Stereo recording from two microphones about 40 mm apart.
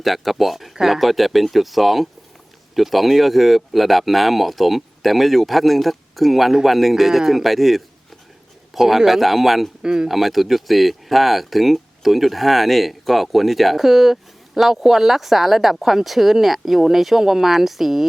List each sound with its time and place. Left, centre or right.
0.0 s speech: centre
9.8 s speech: centre
10.1 s speech: centre